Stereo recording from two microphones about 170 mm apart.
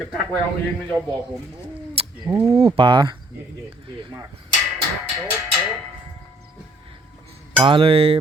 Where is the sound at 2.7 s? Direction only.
30° right (ahead or behind).